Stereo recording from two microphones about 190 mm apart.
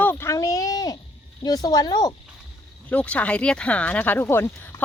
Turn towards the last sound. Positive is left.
turn(degrees=10)  # may be behind; listen again after turning